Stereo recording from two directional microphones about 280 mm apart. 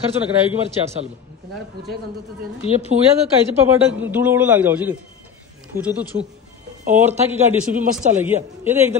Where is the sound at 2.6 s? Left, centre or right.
Centre.